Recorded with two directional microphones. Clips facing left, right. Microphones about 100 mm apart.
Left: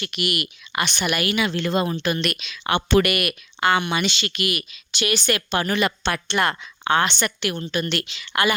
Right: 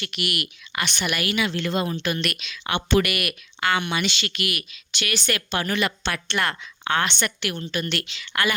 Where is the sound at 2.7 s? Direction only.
50° left (ahead or behind).